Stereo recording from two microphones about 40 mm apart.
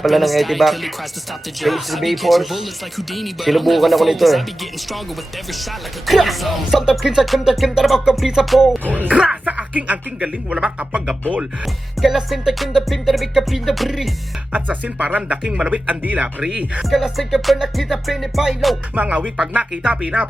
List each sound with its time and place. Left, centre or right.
0.0 s speech: centre
6.1 s speech: centre
8.8 s speech: right
9.1 s music: right
10.2 s speech: right
11.6 s speech: centre
14.5 s music: right
15.4 s speech: centre
15.7 s music: right
16.9 s speech: centre
19.0 s music: right